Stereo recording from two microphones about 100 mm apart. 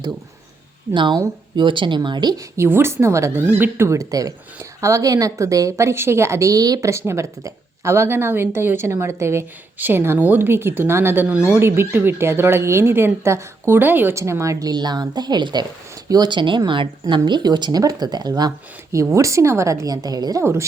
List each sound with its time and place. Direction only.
0.9 s speech: 50° right (ahead or behind)
2.0 s speech: 45° right (ahead or behind)
2.6 s a woman's voice: 25° right (ahead or behind); by 18.5 s 45° right (ahead or behind)
18.9 s a woman's voice: 30° right (ahead or behind)
20.4 s speech: 25° right (ahead or behind)